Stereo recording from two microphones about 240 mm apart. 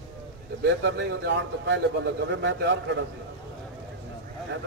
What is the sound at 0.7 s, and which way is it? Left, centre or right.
A man's voice, right.